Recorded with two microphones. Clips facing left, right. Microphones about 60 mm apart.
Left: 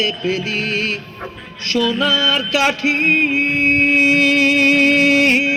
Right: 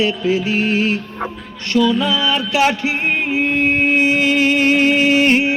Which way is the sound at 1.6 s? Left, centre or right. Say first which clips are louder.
Right 2 dB; left.